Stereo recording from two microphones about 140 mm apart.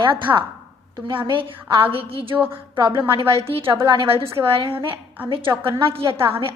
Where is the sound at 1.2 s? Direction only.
35° right (ahead or behind).